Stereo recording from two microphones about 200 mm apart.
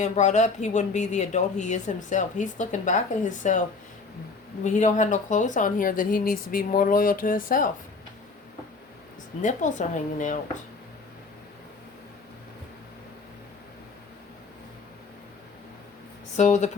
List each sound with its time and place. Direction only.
0.0 s speech: 35° left (ahead or behind)
4.6 s speech: 40° left (ahead or behind)
9.4 s speech: 40° left (ahead or behind)
16.4 s speech: 35° left (ahead or behind)